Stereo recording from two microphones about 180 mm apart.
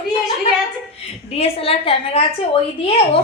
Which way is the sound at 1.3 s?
30° left (ahead or behind).